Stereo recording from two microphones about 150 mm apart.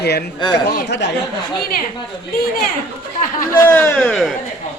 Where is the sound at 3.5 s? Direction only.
15° left (ahead or behind).